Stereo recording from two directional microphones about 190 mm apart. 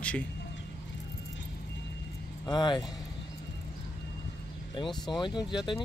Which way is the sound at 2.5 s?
25° left (ahead or behind).